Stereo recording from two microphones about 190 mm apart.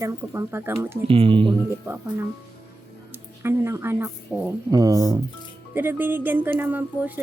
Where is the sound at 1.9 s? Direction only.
10° right (ahead or behind).